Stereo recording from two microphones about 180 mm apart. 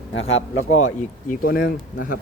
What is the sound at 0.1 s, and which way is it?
Speech, 90° left.